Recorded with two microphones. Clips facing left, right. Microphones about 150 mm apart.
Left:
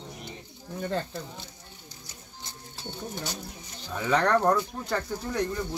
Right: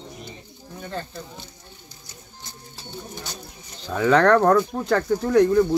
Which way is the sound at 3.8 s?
90° right.